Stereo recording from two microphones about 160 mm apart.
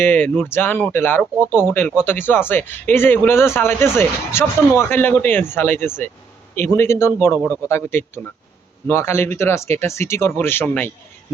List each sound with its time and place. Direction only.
0.0 s speech: 15° left (ahead or behind)